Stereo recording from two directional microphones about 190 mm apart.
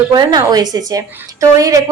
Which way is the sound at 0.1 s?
20° right (ahead or behind).